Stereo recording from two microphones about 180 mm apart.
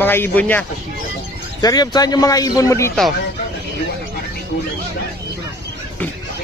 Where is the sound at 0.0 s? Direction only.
10° left (ahead or behind).